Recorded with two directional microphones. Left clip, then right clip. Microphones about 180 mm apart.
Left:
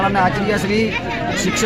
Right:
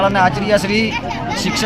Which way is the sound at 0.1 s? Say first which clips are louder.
Right 3 dB; 25° right (ahead or behind).